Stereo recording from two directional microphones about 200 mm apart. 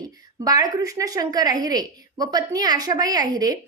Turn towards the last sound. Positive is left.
turn(degrees=-20)  # may be behind; listen again after turning